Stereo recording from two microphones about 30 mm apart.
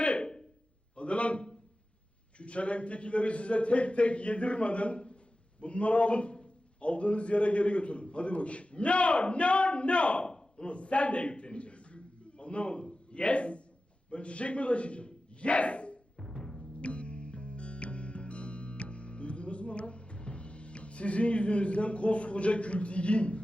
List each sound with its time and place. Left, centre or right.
0.0 s a sound: left
2.4 s a man's voice: left
10.3 s a sound: left
14.1 s speech: left
16.1 s timpani: left
16.8 s music: left